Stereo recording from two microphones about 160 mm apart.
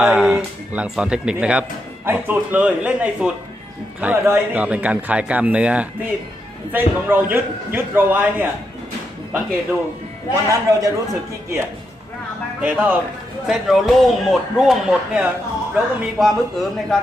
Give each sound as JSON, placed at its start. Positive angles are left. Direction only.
{"t": 0.0, "sound": "speech", "side_deg": -5}
{"t": 10.3, "sound": "a man's voice", "side_deg": -20}